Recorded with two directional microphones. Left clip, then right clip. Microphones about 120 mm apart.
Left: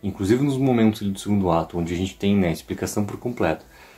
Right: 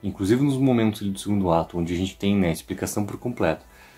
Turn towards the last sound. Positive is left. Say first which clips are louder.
# left 1 dB
turn(degrees=-30)  # may be behind; listen again after turning